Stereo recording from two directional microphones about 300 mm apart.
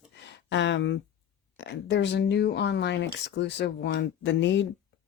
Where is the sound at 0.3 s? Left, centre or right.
Left.